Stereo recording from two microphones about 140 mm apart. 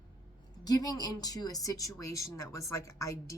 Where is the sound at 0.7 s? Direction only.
30° left (ahead or behind).